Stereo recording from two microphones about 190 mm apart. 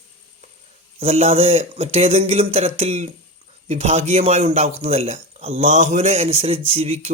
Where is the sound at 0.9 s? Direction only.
30° right (ahead or behind).